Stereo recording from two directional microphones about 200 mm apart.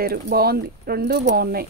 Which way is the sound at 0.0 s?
50° right (ahead or behind).